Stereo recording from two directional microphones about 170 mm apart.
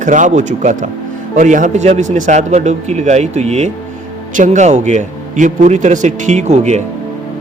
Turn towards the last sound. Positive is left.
turn(degrees=-40)  # may be behind; listen again after turning